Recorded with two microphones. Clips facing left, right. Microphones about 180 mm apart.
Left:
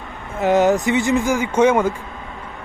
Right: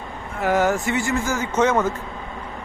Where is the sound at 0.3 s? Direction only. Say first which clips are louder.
Left 4 dB; 20° left (ahead or behind).